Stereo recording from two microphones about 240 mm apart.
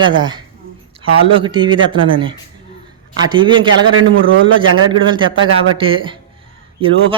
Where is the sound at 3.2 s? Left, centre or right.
Centre.